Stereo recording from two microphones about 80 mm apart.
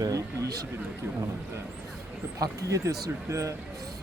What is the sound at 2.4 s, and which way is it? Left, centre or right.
Speech, right.